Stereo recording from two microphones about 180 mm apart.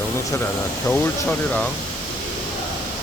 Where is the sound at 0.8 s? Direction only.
10° left (ahead or behind).